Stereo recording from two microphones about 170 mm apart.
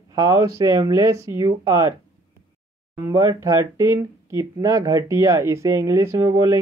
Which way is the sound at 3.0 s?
20° right (ahead or behind).